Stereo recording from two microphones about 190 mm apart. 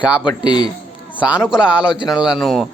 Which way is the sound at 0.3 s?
25° left (ahead or behind).